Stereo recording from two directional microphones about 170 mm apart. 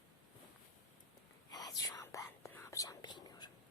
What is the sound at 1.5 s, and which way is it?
Whispering, 20° left (ahead or behind).